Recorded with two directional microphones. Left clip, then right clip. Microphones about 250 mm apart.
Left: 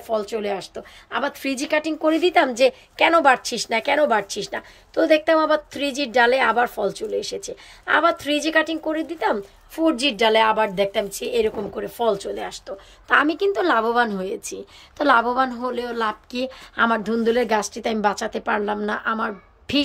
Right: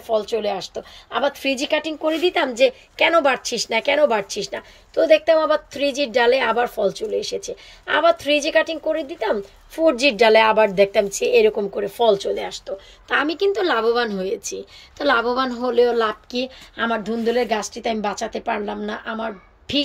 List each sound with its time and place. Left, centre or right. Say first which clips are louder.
0.0 s a woman's voice: right 3 dB; centre
2.0 s a woman's voice: left 1 dB; left
2.3 s a woman's voice: left 1 dB; centre